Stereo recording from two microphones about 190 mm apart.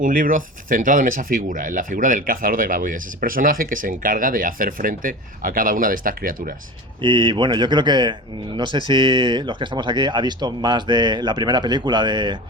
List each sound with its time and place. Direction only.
0.0 s speech: 45° right (ahead or behind)
7.0 s speech: 25° right (ahead or behind)